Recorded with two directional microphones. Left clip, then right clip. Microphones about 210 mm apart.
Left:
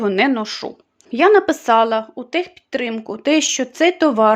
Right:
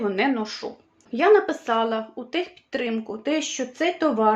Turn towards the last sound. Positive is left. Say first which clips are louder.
# left 7 dB
turn(degrees=50)  # may be behind; listen again after turning